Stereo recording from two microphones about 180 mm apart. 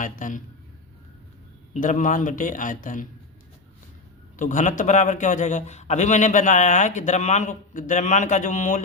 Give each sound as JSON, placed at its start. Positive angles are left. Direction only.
{"t": 0.0, "sound": "a man's voice", "side_deg": 45}
{"t": 1.7, "sound": "a man's voice", "side_deg": 45}
{"t": 4.4, "sound": "a man's voice", "side_deg": 45}